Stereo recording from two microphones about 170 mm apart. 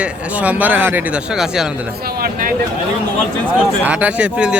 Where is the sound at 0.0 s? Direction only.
10° right (ahead or behind).